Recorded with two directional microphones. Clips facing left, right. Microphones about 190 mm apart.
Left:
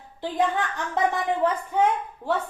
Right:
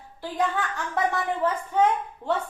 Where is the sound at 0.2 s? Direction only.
20° left (ahead or behind).